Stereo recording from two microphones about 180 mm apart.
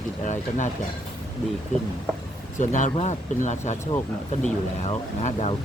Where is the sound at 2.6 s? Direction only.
45° left (ahead or behind).